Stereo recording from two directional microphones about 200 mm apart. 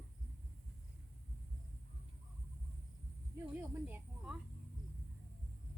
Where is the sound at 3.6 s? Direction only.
10° right (ahead or behind).